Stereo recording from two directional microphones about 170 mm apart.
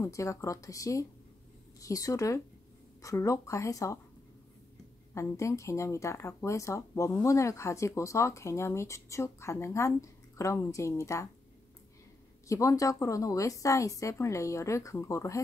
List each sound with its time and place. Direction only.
0.0 s speech: 20° left (ahead or behind)
5.1 s speech: 15° left (ahead or behind)
12.4 s speech: 20° left (ahead or behind)